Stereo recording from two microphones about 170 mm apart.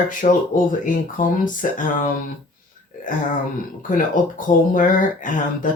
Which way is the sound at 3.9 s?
50° left (ahead or behind).